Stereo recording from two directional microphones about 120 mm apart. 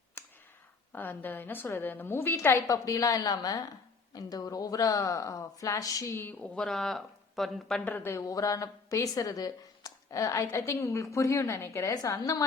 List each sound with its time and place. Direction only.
0.2 s a sound: 20° left (ahead or behind)
0.9 s a woman's voice: 15° left (ahead or behind)
7.9 s a woman's voice: 20° left (ahead or behind)